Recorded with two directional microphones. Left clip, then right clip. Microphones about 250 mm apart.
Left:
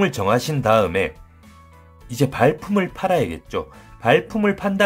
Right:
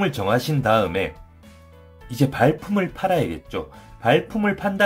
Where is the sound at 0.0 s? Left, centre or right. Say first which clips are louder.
Left 2 dB; left.